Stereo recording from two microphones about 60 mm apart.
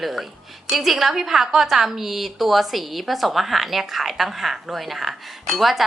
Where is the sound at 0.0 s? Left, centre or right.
Centre.